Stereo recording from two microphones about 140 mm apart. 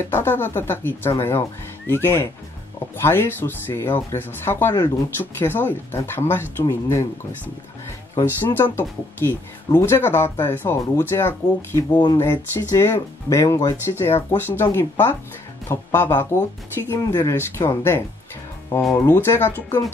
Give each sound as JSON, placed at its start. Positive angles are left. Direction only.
{"t": 0.1, "sound": "speech", "side_deg": 15}
{"t": 11.9, "sound": "speech", "side_deg": 30}
{"t": 12.2, "sound": "speech", "side_deg": 20}